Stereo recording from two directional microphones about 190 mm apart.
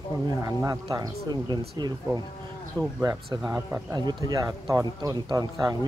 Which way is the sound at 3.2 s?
5° right (ahead or behind).